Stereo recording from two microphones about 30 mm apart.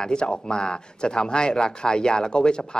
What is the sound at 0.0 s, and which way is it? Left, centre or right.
Speech, left.